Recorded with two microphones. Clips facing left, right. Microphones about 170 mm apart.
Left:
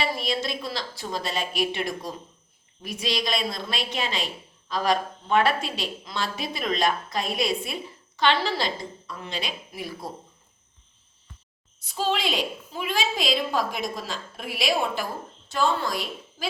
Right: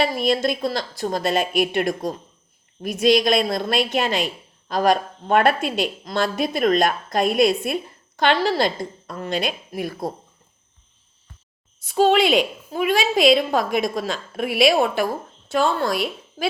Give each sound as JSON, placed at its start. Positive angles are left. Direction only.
{"t": 0.0, "sound": "a woman's voice", "side_deg": -50}
{"t": 11.9, "sound": "a woman's voice", "side_deg": -60}